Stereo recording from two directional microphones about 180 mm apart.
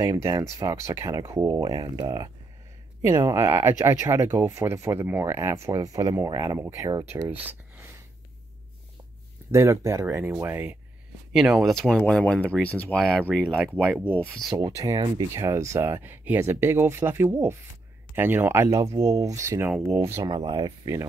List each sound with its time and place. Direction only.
0.0 s speech: 15° right (ahead or behind)
7.4 s a sound: 10° right (ahead or behind)
9.5 s speech: 15° right (ahead or behind)
11.3 s speech: centre (ahead or behind)
14.5 s speech: 20° right (ahead or behind)
20.2 s speech: 25° right (ahead or behind)